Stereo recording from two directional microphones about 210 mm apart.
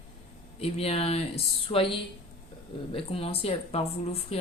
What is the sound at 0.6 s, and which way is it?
Speech, 30° left (ahead or behind).